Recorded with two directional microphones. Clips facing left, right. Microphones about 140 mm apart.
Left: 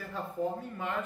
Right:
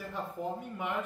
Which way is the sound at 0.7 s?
15° right (ahead or behind).